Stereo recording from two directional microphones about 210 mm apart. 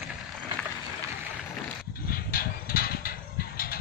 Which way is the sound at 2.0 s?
45° left (ahead or behind).